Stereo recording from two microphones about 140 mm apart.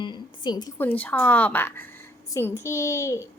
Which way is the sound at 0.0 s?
35° left (ahead or behind).